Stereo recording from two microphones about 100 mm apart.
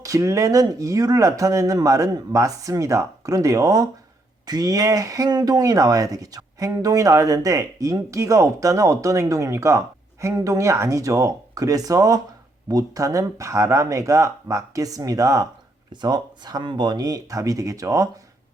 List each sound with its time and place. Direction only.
0.0 s speech: 35° right (ahead or behind)
15.9 s speech: 45° right (ahead or behind)